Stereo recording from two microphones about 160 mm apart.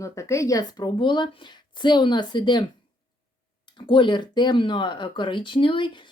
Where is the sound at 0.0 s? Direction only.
20° left (ahead or behind).